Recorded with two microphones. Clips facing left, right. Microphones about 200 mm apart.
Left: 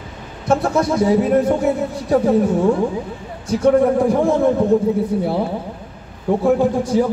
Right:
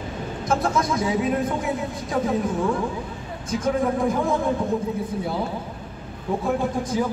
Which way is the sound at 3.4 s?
70° left (ahead or behind).